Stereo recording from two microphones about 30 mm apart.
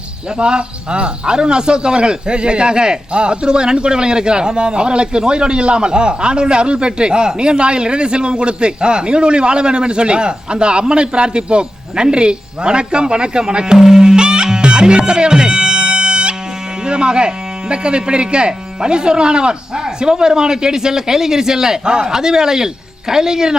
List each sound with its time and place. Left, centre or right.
0.3 s speech: right
13.7 s music: right
16.8 s speech: right